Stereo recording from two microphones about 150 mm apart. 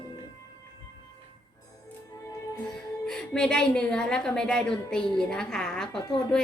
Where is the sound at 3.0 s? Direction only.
5° left (ahead or behind).